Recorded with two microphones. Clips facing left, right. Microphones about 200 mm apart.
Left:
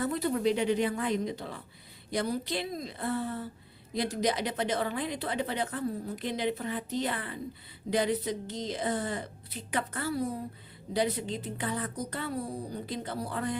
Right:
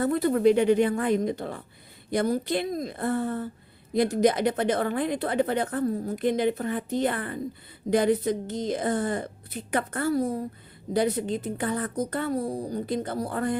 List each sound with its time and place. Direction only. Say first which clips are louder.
0.0 s a woman's voice: right 7 dB; 55° right (ahead or behind)